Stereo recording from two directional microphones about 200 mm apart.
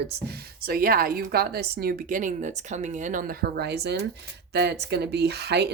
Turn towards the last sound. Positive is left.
turn(degrees=-55)  # may be behind; listen again after turning